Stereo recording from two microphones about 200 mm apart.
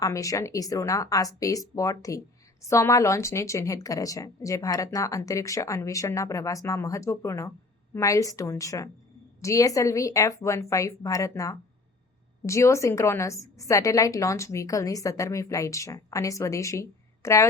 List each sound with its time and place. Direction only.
0.0 s a woman's voice: 15° left (ahead or behind)